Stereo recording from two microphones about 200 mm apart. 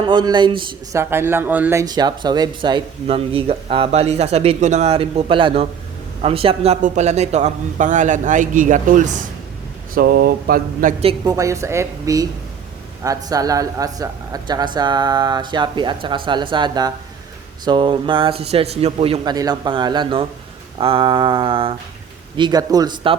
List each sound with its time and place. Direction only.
0.0 s speech: 20° right (ahead or behind)
1.1 s a man's voice: 10° right (ahead or behind); by 10.9 s 45° right (ahead or behind)
11.3 s speech: 15° right (ahead or behind)